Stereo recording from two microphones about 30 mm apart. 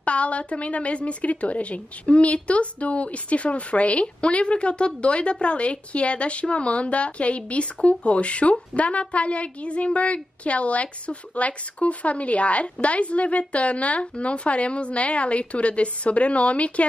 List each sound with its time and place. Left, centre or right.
0.0 s a woman's voice: left